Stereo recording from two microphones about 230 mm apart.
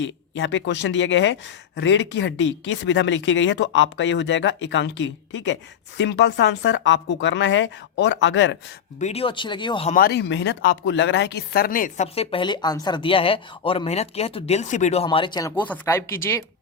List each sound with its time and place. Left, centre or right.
0.0 s speech: left
9.0 s a woman's voice: left
9.9 s a woman's voice: left; by 16.4 s centre